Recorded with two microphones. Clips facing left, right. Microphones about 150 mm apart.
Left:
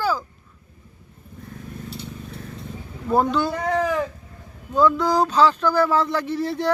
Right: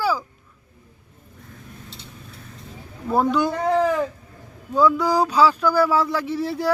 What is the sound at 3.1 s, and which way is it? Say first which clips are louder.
Speech: even; centre (ahead or behind).